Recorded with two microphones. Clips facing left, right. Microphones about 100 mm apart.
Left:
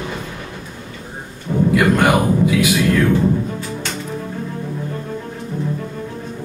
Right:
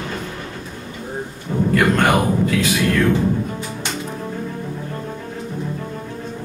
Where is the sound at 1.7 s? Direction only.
5° left (ahead or behind).